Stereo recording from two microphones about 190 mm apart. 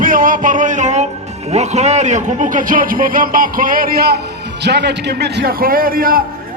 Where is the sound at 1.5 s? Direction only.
35° right (ahead or behind).